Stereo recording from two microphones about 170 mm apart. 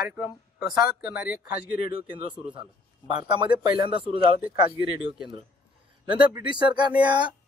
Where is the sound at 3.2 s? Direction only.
30° right (ahead or behind).